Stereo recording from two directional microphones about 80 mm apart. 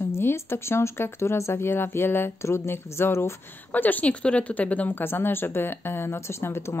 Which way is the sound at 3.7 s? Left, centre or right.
Left.